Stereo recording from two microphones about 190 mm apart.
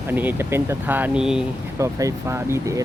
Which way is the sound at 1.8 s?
15° right (ahead or behind).